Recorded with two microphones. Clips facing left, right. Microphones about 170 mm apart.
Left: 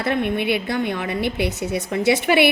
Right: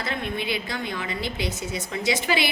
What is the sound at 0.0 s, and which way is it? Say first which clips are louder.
A woman's voice: left 8 dB; 60° left (ahead or behind).